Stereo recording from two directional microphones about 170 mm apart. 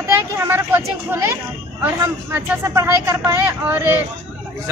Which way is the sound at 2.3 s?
15° right (ahead or behind).